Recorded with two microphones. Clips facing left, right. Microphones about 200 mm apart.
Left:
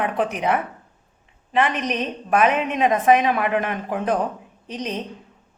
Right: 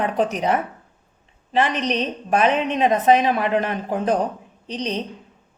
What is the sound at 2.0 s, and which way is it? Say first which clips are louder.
A woman's voice: left 2 dB; 30° right (ahead or behind).